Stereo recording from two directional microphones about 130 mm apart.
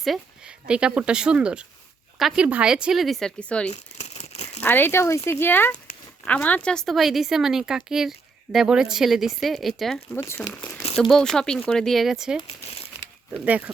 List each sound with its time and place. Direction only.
0.0 s a woman's voice: 5° right (ahead or behind)
3.7 s crumpling: 55° left (ahead or behind)
4.6 s a woman's voice: 15° left (ahead or behind); by 10.0 s centre (ahead or behind)
10.2 s speech: 20° left (ahead or behind)
11.1 s a woman's voice: 5° left (ahead or behind)
13.4 s speech: 10° right (ahead or behind)